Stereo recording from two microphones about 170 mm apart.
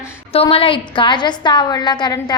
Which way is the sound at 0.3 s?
35° left (ahead or behind).